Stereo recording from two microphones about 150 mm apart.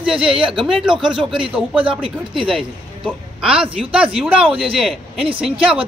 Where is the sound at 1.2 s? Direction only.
5° right (ahead or behind).